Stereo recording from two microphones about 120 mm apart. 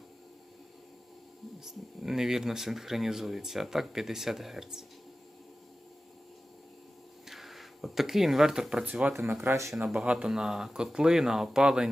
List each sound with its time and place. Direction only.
1.6 s speech: 5° right (ahead or behind)
7.3 s speech: centre (ahead or behind); by 9.7 s 25° right (ahead or behind)
9.7 s speech: 5° right (ahead or behind)